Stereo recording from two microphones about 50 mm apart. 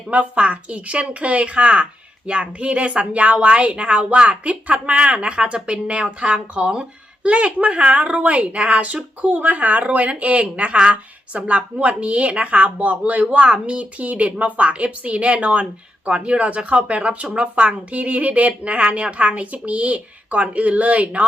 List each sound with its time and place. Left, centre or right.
0.1 s speech: right